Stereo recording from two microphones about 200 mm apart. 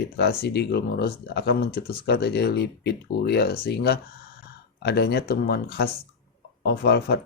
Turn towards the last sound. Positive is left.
turn(degrees=55)  # may be behind; listen again after turning